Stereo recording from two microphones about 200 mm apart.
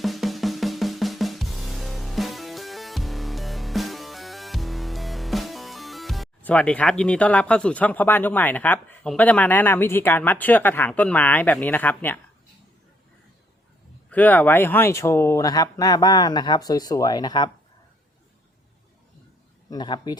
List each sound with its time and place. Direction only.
0.0 s drum: centre (ahead or behind)
14.1 s speech: 10° left (ahead or behind)
19.7 s speech: 20° left (ahead or behind)